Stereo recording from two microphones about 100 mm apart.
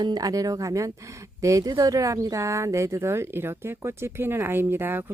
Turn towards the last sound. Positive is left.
turn(degrees=-20)  # may be behind; listen again after turning